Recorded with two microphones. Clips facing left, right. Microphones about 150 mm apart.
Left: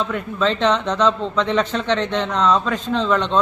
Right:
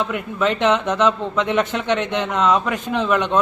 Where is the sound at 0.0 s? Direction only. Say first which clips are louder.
Even; 15° right (ahead or behind).